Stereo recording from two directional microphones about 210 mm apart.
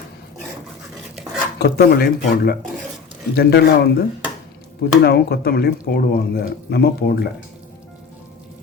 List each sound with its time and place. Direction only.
1.5 s speech: 50° left (ahead or behind)